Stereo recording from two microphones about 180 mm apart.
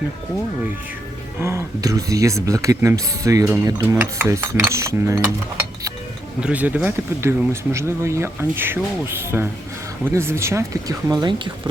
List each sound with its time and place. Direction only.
1.4 s speech: 15° right (ahead or behind)
6.4 s speech: 10° right (ahead or behind); by 11.7 s 25° right (ahead or behind)